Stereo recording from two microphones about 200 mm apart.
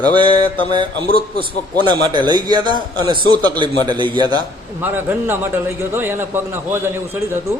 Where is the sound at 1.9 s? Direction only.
20° right (ahead or behind).